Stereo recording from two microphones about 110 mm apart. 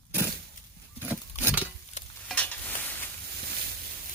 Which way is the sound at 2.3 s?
10° left (ahead or behind).